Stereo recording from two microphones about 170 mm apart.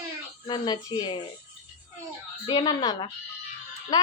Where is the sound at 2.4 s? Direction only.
25° left (ahead or behind).